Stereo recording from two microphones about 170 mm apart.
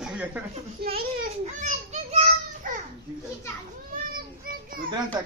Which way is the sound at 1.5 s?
45° right (ahead or behind).